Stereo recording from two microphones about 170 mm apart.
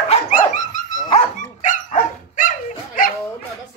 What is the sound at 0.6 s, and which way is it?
Dog, 50° left (ahead or behind).